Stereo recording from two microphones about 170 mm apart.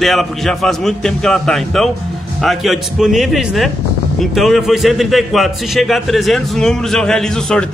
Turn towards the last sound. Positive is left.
turn(degrees=5)  # may be behind; listen again after turning